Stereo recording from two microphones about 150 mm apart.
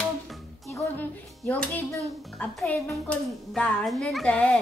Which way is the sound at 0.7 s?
10° left (ahead or behind).